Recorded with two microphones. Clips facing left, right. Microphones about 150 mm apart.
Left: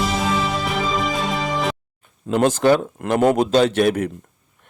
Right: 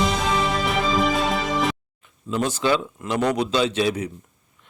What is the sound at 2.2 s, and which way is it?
A man's voice, 55° left (ahead or behind).